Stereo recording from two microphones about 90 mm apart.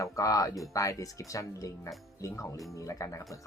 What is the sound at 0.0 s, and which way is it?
Speech, 40° left (ahead or behind).